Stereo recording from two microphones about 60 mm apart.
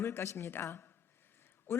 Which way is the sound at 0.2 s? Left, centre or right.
Left.